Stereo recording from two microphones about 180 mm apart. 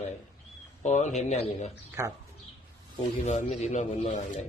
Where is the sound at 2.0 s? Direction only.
15° right (ahead or behind).